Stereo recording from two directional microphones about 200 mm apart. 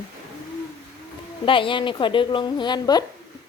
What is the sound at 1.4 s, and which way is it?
A woman's voice, 25° left (ahead or behind).